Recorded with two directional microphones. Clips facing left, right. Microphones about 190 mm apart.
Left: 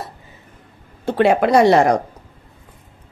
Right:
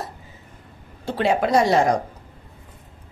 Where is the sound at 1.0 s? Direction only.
60° left (ahead or behind).